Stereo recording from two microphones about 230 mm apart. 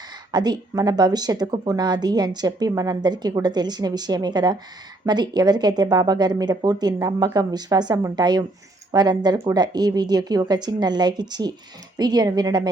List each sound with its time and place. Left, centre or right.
0.3 s speech: centre